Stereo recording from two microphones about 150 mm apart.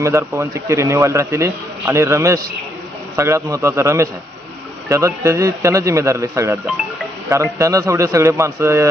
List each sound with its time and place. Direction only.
0.0 s a man's voice: 20° right (ahead or behind)
7.6 s a man's voice: 20° right (ahead or behind)